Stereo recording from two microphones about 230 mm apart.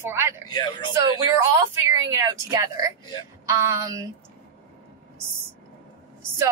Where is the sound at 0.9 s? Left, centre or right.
Centre.